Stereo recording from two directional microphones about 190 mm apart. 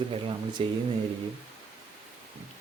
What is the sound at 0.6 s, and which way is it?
Speech, 30° right (ahead or behind).